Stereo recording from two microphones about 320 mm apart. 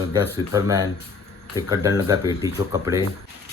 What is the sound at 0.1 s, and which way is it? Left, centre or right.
Speech, centre.